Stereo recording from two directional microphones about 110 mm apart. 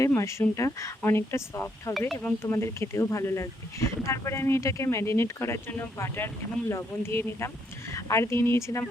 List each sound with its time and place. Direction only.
0.2 s speech: 25° left (ahead or behind)